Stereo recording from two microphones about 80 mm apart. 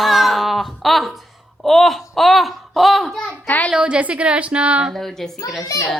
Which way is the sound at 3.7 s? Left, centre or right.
Centre.